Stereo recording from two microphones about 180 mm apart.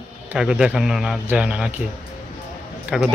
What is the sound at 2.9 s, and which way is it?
Speech, centre (ahead or behind).